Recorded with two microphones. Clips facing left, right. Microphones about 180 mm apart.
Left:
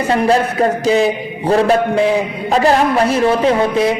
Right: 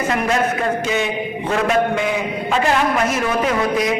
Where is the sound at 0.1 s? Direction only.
30° left (ahead or behind).